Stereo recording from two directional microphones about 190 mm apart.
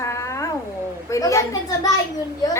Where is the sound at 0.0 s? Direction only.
15° left (ahead or behind).